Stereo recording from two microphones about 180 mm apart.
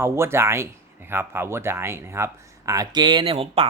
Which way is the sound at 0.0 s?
15° right (ahead or behind).